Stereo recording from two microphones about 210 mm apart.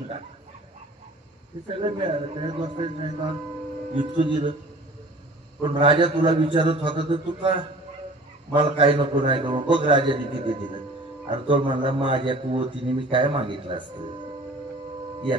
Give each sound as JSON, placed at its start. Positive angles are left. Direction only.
{"t": 1.7, "sound": "a man's voice", "side_deg": -25}
{"t": 5.6, "sound": "a man's voice", "side_deg": -25}